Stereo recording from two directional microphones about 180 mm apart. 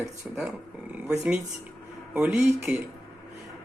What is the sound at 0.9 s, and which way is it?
A man's voice, 5° right (ahead or behind).